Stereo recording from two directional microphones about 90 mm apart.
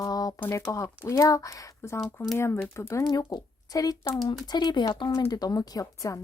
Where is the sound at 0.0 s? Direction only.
45° left (ahead or behind).